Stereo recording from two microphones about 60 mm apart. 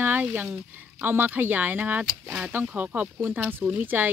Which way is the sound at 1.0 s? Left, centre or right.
Right.